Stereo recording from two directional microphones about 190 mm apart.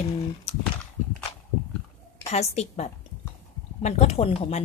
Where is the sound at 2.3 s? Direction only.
35° left (ahead or behind).